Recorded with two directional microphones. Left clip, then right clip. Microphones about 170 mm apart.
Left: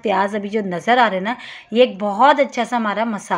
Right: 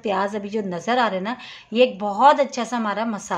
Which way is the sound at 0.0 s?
20° left (ahead or behind).